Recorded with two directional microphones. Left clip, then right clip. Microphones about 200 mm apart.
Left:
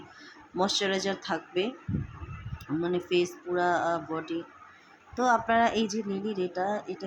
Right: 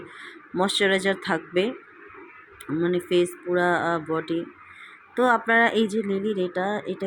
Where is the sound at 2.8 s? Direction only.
10° right (ahead or behind).